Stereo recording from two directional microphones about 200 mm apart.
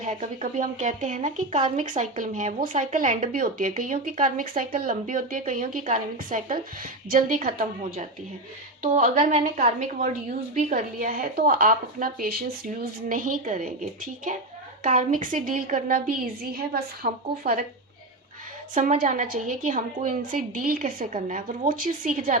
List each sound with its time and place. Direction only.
0.0 s speech: 40° right (ahead or behind)
18.7 s speech: 40° right (ahead or behind)